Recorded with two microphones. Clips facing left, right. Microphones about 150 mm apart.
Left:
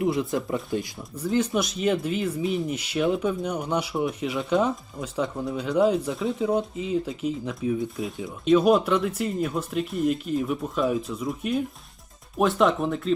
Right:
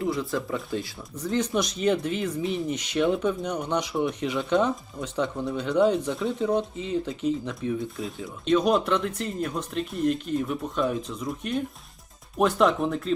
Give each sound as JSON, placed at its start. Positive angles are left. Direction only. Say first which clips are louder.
{"t": 0.0, "sound": "speech", "louder": "left 3 dB", "side_deg": 20}
{"t": 0.8, "sound": "speech", "louder": "left 2 dB", "side_deg": 10}